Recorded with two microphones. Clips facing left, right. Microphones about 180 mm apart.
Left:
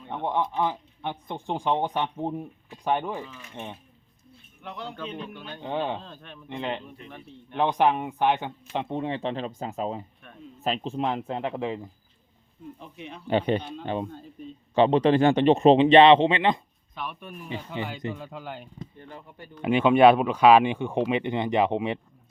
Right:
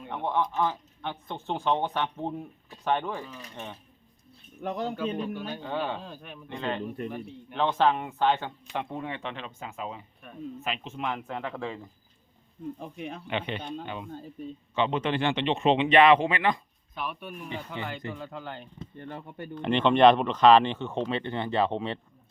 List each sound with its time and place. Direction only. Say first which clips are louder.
0.1 s speech: left 1 dB; 15° left (ahead or behind)
4.6 s speech: right 7 dB; 45° right (ahead or behind)
5.5 s speech: left 6 dB; 20° left (ahead or behind)
6.0 s speech: right 2 dB; 10° right (ahead or behind)
6.5 s speech: even; 20° left (ahead or behind)
12.8 s speech: right 4 dB; 45° right (ahead or behind)
13.2 s speech: left 10 dB; 40° left (ahead or behind)
16.9 s speech: right 1 dB; 5° right (ahead or behind)
17.7 s speech: left 5 dB; 15° left (ahead or behind)
18.9 s speech: right 5 dB; 60° right (ahead or behind)
19.6 s speech: left 2 dB; 5° left (ahead or behind)